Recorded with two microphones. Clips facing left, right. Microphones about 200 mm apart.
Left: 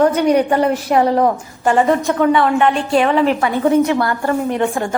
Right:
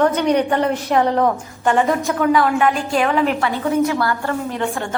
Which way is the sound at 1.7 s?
Centre (ahead or behind).